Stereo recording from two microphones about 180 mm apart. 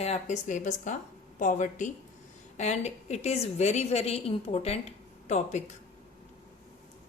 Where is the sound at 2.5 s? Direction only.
40° left (ahead or behind).